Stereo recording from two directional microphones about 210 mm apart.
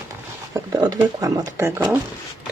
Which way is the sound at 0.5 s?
15° right (ahead or behind).